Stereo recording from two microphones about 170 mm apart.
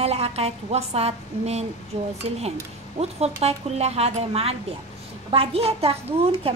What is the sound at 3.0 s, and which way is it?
A woman's voice, 40° right (ahead or behind).